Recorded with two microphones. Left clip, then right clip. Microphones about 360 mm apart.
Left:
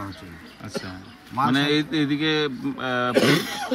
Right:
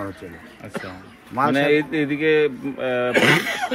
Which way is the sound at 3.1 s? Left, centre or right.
Right.